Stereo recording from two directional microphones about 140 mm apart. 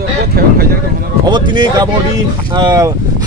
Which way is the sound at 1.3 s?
30° right (ahead or behind).